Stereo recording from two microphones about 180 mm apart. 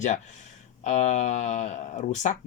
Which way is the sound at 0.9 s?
40° left (ahead or behind).